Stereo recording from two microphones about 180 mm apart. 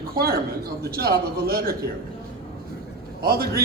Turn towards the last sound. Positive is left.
turn(degrees=-60)  # may be behind; listen again after turning